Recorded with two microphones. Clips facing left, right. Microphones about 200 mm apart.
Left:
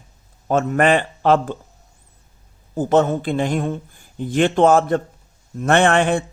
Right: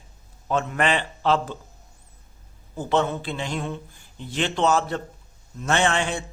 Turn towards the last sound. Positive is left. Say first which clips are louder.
# left 7 dB
turn(degrees=55)  # may be behind; listen again after turning